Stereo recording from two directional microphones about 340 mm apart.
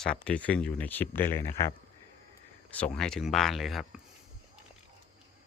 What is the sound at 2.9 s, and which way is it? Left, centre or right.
Speech, centre.